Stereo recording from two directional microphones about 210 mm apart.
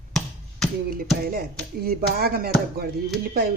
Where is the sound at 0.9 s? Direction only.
45° right (ahead or behind).